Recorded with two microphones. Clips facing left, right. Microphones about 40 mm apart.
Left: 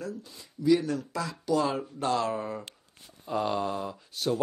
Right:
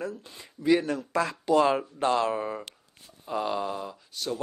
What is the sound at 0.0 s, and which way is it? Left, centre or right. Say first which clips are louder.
Speech: right 2 dB; right.